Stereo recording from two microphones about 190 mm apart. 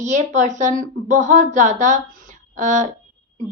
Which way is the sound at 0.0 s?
40° right (ahead or behind).